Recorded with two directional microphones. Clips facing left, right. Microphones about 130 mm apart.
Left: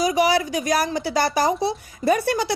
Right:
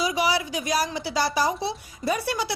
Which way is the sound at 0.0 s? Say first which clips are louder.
Left 5 dB; 45° left (ahead or behind).